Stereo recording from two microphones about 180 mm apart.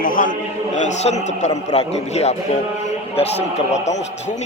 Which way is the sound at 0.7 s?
40° left (ahead or behind).